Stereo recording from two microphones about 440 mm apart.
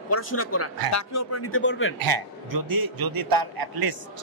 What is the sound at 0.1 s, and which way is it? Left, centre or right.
Speech, left.